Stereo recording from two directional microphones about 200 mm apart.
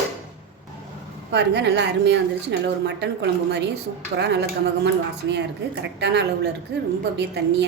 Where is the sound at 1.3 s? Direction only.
60° right (ahead or behind).